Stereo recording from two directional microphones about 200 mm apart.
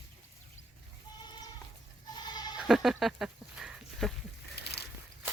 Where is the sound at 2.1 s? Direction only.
20° left (ahead or behind).